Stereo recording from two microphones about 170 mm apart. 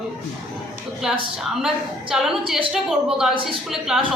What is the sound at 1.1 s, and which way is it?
A woman's voice, 5° right (ahead or behind).